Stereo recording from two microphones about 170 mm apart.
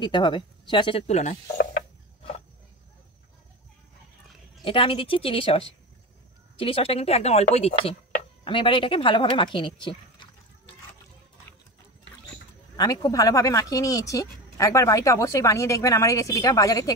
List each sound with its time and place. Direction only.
0.0 s speech: 25° left (ahead or behind); by 1.4 s 40° left (ahead or behind)
4.6 s a woman's voice: 30° left (ahead or behind)
6.6 s a woman's voice: 35° left (ahead or behind)
12.7 s speech: 20° left (ahead or behind)